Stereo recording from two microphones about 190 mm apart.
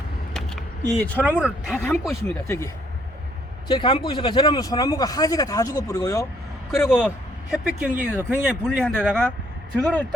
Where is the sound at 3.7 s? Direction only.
25° left (ahead or behind).